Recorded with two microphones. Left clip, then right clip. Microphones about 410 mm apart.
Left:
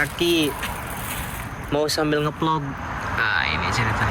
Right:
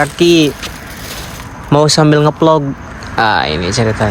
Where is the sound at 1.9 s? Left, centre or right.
Centre.